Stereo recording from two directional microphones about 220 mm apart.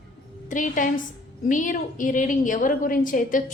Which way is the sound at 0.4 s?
35° left (ahead or behind).